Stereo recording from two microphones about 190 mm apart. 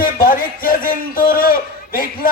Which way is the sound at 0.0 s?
50° left (ahead or behind).